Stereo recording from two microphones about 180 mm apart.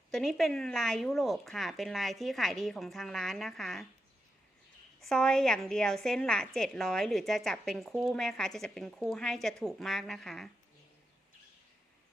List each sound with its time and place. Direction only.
0.1 s a woman's voice: centre (ahead or behind)
4.9 s a woman's voice: centre (ahead or behind)